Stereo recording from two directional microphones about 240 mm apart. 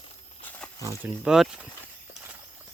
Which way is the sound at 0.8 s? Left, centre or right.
Centre.